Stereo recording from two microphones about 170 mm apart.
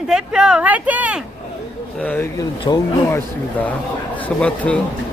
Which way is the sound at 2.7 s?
30° left (ahead or behind).